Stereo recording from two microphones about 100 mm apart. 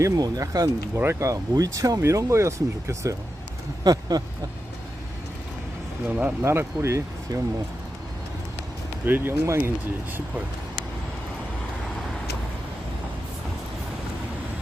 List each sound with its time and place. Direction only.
0.0 s speech: 35° right (ahead or behind)
4.1 s speech: 40° right (ahead or behind)
6.1 s speech: 15° right (ahead or behind)
7.3 s speech: 40° right (ahead or behind)
9.0 s speech: 20° right (ahead or behind)